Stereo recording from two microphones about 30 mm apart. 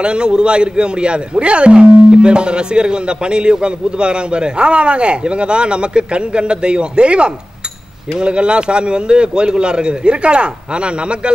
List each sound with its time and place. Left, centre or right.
0.0 s speech: right